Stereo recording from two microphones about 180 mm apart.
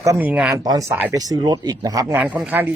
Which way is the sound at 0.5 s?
20° right (ahead or behind).